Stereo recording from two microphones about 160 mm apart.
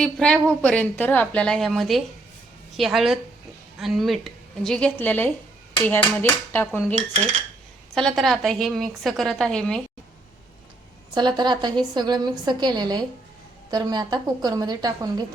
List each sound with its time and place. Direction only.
0.0 s a woman's voice: 5° left (ahead or behind)
7.9 s a woman's voice: centre (ahead or behind)
11.1 s a woman's voice: 25° right (ahead or behind)